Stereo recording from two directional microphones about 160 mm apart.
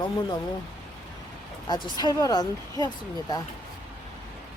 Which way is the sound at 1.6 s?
25° left (ahead or behind).